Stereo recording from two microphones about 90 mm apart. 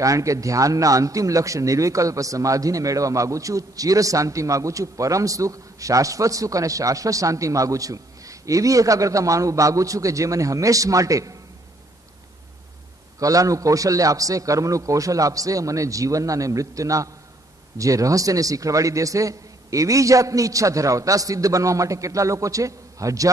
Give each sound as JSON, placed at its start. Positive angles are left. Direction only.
{"t": 0.0, "sound": "a man's voice", "side_deg": -40}
{"t": 13.2, "sound": "a man's voice", "side_deg": -40}